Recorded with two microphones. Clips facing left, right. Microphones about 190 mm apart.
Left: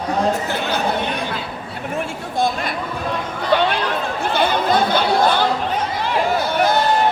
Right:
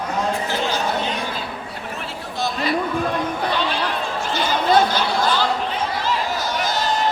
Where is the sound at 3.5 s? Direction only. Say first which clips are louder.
Left 5 dB; 60° left (ahead or behind).